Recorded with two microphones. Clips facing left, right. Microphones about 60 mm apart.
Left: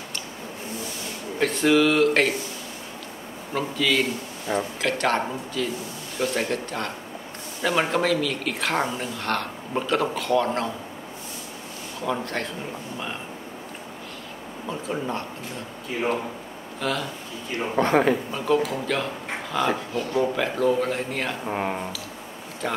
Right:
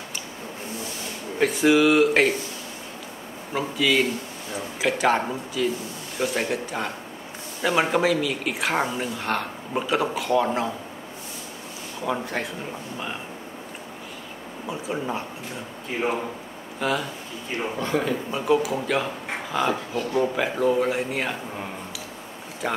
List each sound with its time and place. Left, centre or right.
1.4 s a woman's voice: centre
3.5 s a woman's voice: centre
12.0 s a woman's voice: centre
14.7 s a woman's voice: centre
16.8 s a woman's voice: centre
17.7 s speech: left
18.3 s a woman's voice: centre
21.5 s speech: left
22.6 s a woman's voice: centre